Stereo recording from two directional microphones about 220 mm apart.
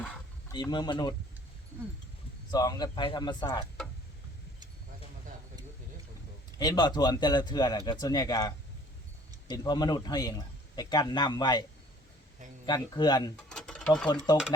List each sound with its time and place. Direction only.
0.0 s a sound: 5° left (ahead or behind)
0.5 s a man's voice: 20° left (ahead or behind)
2.5 s a man's voice: 15° left (ahead or behind)
6.6 s a man's voice: 20° left (ahead or behind)
12.6 s a man's voice: 20° left (ahead or behind)
13.3 s sewing machine: 5° left (ahead or behind)